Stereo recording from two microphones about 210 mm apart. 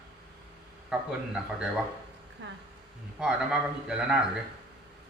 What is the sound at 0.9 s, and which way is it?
Speech, 5° right (ahead or behind).